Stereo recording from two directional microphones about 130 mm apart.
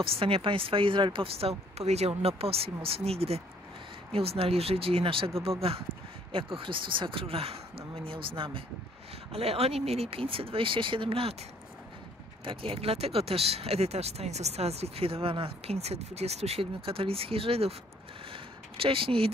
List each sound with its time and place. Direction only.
0.0 s speech: 45° right (ahead or behind)
12.4 s speech: 45° right (ahead or behind)
18.3 s a sound: 45° right (ahead or behind)